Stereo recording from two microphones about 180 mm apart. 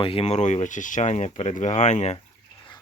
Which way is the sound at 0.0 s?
30° left (ahead or behind).